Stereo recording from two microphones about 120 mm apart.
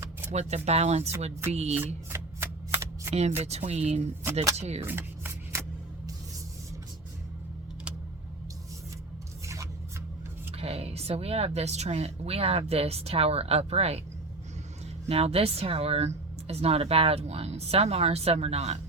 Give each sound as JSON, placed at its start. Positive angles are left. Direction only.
{"t": 0.0, "sound": "a sound", "side_deg": -25}
{"t": 0.3, "sound": "speech", "side_deg": -65}
{"t": 1.7, "sound": "shuffling cards", "side_deg": -15}
{"t": 3.2, "sound": "speech", "side_deg": -65}
{"t": 4.9, "sound": "shuffling cards", "side_deg": -20}
{"t": 10.5, "sound": "speech", "side_deg": -55}
{"t": 15.0, "sound": "speech", "side_deg": -60}